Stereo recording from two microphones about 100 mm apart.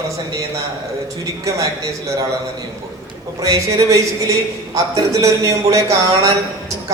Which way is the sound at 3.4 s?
35° right (ahead or behind).